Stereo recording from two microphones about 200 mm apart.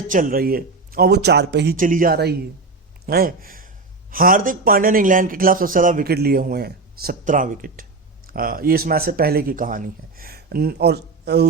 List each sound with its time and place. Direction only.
0.1 s a man's voice: 45° right (ahead or behind)
1.7 s a man's voice: 40° right (ahead or behind)